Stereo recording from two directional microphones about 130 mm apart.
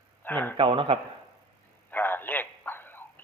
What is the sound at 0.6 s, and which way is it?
Speech, 40° right (ahead or behind).